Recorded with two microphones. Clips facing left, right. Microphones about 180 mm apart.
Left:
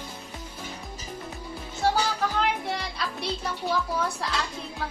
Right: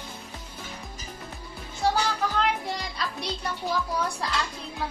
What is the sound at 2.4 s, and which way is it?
Music, centre (ahead or behind).